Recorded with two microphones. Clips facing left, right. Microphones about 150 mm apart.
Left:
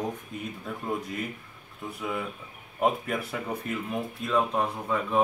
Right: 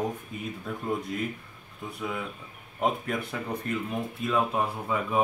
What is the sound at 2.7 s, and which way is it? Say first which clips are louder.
Speech: left 2 dB; 5° left (ahead or behind).